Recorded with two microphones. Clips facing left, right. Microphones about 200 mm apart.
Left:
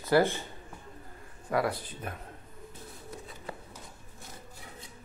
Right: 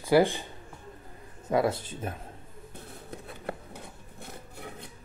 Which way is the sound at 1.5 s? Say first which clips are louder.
Right 4 dB; 25° right (ahead or behind).